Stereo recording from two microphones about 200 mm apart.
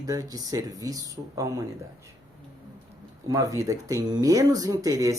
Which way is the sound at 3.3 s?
15° right (ahead or behind).